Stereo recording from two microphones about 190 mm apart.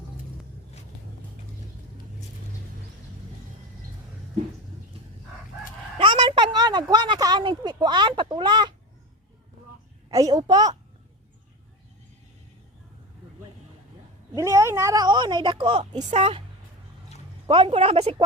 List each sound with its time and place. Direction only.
6.0 s speech: 25° right (ahead or behind)
10.1 s a woman's voice: 20° right (ahead or behind)
14.3 s a woman's voice: 15° right (ahead or behind); by 16.4 s 30° right (ahead or behind)
17.5 s a woman's voice: 30° right (ahead or behind)